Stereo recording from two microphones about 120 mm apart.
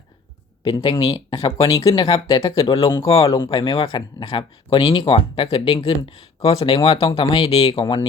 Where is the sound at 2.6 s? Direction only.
50° left (ahead or behind).